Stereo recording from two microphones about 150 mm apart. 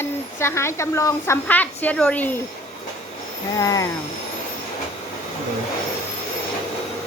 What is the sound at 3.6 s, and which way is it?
Speech, 25° left (ahead or behind).